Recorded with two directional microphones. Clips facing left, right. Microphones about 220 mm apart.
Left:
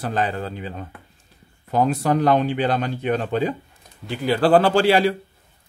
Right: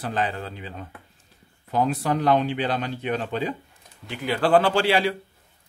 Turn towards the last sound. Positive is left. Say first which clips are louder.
# left 4 dB
turn(degrees=40)  # may be behind; listen again after turning